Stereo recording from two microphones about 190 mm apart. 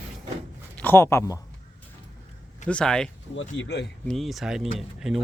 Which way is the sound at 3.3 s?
70° left (ahead or behind).